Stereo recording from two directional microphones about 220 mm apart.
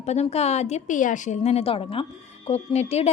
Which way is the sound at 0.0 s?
30° left (ahead or behind).